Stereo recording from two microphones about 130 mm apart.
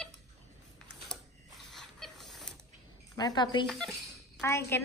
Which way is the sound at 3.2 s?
35° left (ahead or behind).